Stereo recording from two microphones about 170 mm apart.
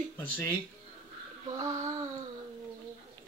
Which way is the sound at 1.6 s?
20° right (ahead or behind).